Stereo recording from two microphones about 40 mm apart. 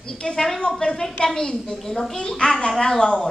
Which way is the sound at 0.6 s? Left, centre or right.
Left.